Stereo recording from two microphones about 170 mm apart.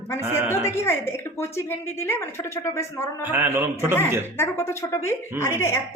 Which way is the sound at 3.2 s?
10° right (ahead or behind).